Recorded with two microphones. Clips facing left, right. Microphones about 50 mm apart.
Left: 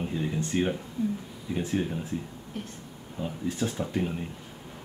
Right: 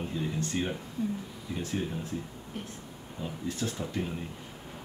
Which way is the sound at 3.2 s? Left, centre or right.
Centre.